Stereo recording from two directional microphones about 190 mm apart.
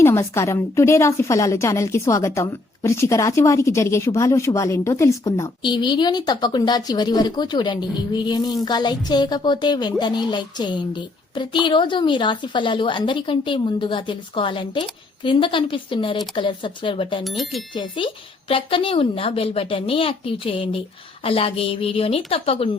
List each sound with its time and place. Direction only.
0.0 s a woman's voice: 15° left (ahead or behind)
17.2 s speech: centre (ahead or behind)
17.7 s a woman's voice: 25° left (ahead or behind)